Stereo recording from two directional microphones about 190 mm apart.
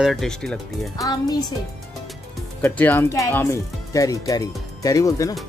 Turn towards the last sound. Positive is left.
turn(degrees=15)  # may be behind; listen again after turning